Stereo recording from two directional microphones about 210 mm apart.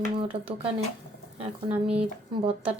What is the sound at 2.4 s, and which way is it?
Speech, 25° right (ahead or behind).